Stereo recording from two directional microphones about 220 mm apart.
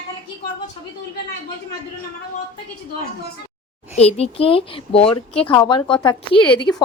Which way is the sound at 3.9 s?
30° left (ahead or behind).